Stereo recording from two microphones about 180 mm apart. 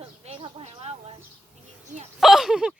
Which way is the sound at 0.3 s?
30° right (ahead or behind).